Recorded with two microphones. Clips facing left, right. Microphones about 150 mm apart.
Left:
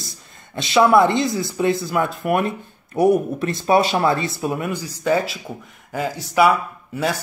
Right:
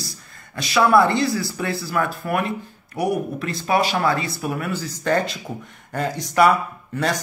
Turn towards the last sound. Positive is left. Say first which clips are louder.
# even
turn(degrees=5)  # may be behind; listen again after turning